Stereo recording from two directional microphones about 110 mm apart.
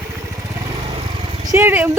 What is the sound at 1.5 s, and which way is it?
Speech, 20° right (ahead or behind).